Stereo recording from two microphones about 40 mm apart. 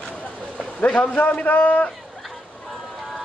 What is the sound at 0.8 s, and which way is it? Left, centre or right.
A man's voice, left.